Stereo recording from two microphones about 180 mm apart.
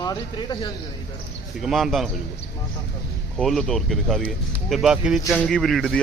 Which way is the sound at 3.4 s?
Centre (ahead or behind).